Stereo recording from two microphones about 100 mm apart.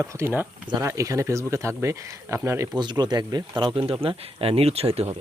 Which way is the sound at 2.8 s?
45° right (ahead or behind).